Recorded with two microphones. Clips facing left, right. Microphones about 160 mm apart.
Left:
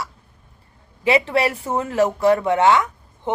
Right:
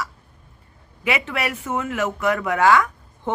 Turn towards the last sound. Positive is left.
turn(degrees=20)  # may be behind; listen again after turning